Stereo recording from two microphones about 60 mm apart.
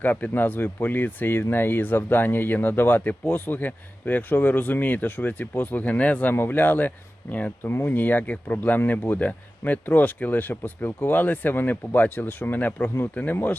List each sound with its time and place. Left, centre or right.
0.0 s speech: left
6.3 s speech: left
7.6 s speech: left
7.9 s speech: left